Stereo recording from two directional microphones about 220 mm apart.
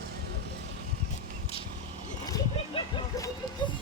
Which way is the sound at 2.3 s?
15° left (ahead or behind).